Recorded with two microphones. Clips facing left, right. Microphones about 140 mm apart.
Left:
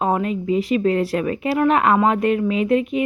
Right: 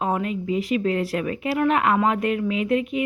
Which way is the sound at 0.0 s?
35° left (ahead or behind).